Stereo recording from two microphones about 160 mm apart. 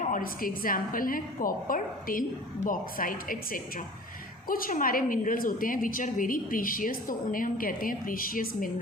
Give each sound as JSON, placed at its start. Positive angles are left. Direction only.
{"t": 0.0, "sound": "a woman's voice", "side_deg": 60}